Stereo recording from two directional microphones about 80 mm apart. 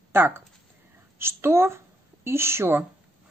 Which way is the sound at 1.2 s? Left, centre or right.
Right.